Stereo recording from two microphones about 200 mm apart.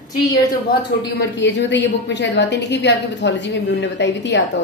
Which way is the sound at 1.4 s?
60° left (ahead or behind).